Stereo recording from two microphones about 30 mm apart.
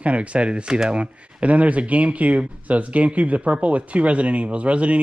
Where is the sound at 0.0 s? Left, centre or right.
Right.